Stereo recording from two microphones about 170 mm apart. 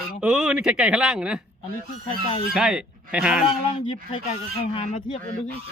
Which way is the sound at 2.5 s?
5° right (ahead or behind).